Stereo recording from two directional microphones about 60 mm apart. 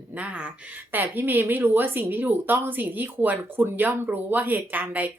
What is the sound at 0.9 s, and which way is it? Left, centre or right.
Speech, right.